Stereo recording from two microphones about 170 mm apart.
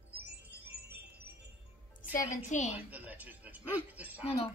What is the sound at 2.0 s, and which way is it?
Speech, 50° left (ahead or behind).